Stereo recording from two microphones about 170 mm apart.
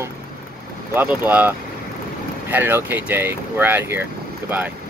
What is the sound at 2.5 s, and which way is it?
Speech, 10° right (ahead or behind).